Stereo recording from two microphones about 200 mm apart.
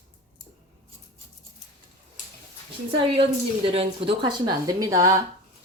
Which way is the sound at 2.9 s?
25° right (ahead or behind).